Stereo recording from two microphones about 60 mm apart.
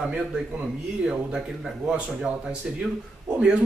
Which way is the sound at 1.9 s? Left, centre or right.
Centre.